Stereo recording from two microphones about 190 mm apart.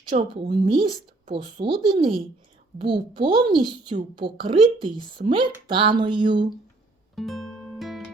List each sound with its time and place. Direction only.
0.1 s speech: 40° right (ahead or behind)
0.4 s speech: 25° right (ahead or behind)
7.2 s music: centre (ahead or behind)